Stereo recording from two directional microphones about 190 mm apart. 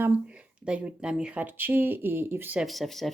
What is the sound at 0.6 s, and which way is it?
Speech, 5° right (ahead or behind).